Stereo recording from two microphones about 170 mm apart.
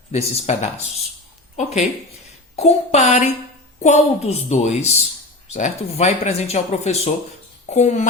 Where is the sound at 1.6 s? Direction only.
45° left (ahead or behind).